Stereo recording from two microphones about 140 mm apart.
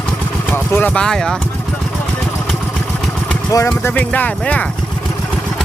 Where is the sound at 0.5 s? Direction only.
15° left (ahead or behind).